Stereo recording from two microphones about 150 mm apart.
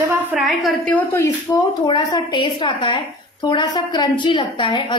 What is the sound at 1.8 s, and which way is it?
A woman's voice, 30° left (ahead or behind).